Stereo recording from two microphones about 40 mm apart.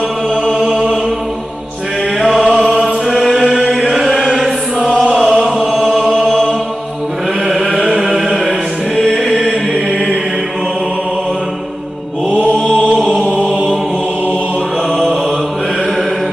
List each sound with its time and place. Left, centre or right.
3.8 s chant: right
7.7 s chant: right